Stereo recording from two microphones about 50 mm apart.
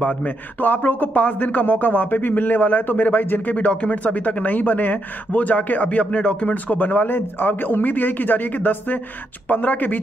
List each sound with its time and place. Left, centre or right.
0.0 s speech: left
3.5 s speech: left